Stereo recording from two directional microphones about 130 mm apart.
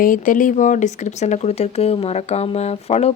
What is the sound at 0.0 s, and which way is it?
Speech, 90° left.